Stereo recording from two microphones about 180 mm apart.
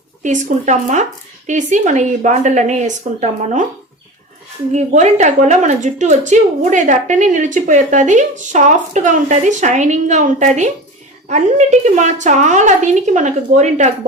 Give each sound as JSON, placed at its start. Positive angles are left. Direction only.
{"t": 0.2, "sound": "a woman's voice", "side_deg": -45}
{"t": 4.7, "sound": "a woman's voice", "side_deg": -40}